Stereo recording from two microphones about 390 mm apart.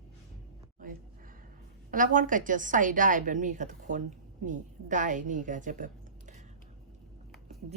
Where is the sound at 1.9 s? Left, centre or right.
Centre.